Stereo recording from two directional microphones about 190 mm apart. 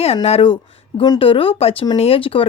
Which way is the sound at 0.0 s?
35° left (ahead or behind).